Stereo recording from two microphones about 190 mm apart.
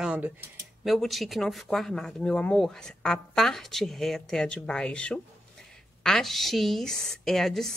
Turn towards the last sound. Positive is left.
turn(degrees=0)  # may be behind; listen again after turning